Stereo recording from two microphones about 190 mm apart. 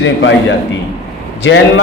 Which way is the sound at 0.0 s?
70° left (ahead or behind).